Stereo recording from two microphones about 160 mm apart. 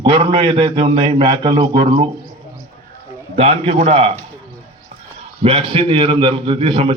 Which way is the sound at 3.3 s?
40° right (ahead or behind).